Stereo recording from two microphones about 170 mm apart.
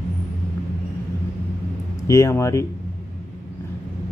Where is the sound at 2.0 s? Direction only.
15° left (ahead or behind).